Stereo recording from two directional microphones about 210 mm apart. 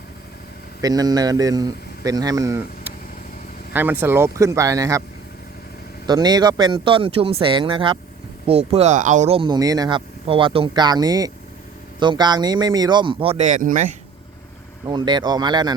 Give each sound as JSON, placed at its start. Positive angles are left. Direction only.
{"t": 0.8, "sound": "speech", "side_deg": -20}
{"t": 6.1, "sound": "speech", "side_deg": -20}
{"t": 14.8, "sound": "speech", "side_deg": -20}